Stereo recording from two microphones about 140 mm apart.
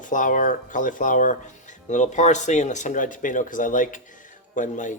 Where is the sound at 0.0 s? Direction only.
65° left (ahead or behind).